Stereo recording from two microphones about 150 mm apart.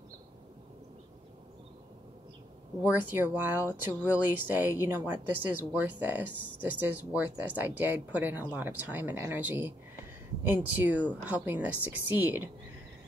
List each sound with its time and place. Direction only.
2.8 s speech: 10° right (ahead or behind)